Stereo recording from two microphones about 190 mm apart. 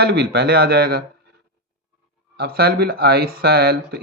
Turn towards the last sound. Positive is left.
turn(degrees=-55)  # may be behind; listen again after turning